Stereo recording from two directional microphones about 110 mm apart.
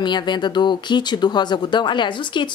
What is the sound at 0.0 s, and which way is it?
A woman's voice, 45° left (ahead or behind).